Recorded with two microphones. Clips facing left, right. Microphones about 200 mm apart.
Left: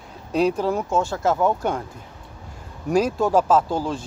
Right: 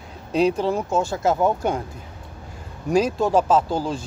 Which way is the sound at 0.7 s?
5° left (ahead or behind).